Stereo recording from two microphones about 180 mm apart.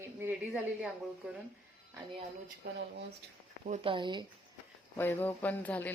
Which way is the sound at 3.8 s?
25° right (ahead or behind).